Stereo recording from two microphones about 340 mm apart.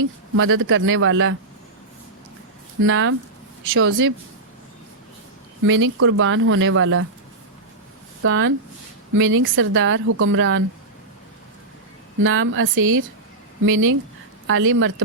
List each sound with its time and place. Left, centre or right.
0.3 s speech: right
2.8 s speech: right
5.6 s speech: right
8.2 s speech: right
12.2 s speech: right